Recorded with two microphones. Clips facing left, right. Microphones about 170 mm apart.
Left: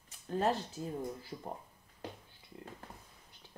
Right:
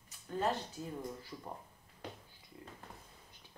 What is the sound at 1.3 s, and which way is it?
Speech, 35° left (ahead or behind).